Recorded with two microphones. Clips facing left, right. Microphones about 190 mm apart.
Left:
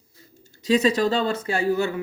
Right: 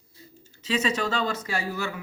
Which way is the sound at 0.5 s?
40° left (ahead or behind).